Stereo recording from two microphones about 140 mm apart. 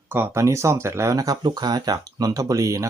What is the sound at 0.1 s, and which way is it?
Speech, 15° right (ahead or behind).